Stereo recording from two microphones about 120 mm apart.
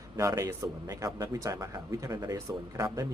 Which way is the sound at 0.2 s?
25° right (ahead or behind).